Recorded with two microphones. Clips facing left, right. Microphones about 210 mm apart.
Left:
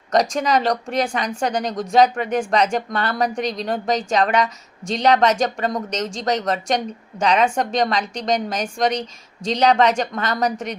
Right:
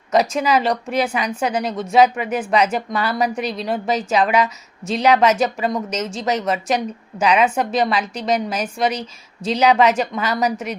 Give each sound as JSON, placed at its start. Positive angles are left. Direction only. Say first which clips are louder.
{"t": 0.1, "sound": "a woman's voice", "louder": "right 1 dB", "side_deg": -5}